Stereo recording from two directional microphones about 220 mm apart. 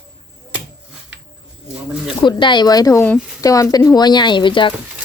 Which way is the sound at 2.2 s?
20° left (ahead or behind).